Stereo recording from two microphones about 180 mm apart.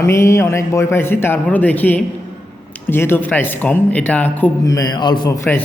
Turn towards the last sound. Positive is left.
turn(degrees=10)  # may be behind; listen again after turning